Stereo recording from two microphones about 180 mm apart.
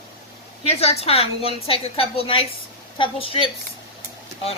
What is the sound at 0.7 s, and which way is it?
A woman's voice, 35° left (ahead or behind).